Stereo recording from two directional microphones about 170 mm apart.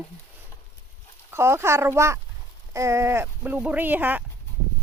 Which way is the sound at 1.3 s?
15° right (ahead or behind).